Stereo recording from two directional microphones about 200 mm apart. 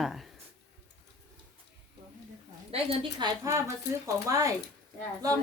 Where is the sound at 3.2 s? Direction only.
20° right (ahead or behind).